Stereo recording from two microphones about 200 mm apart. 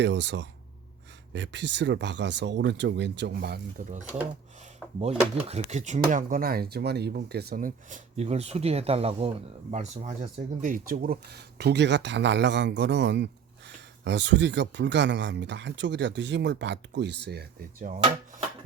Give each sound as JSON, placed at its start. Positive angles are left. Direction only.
{"t": 0.0, "sound": "speech", "side_deg": -65}
{"t": 5.5, "sound": "speech", "side_deg": -35}